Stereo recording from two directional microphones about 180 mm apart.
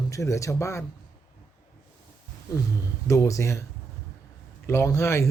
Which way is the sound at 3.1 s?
15° left (ahead or behind).